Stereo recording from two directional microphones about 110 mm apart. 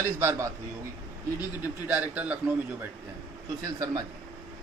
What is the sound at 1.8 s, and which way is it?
Speech, 15° right (ahead or behind).